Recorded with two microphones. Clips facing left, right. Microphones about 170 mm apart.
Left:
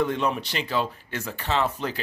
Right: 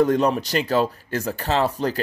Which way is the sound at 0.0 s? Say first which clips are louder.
Right 6 dB; 40° right (ahead or behind).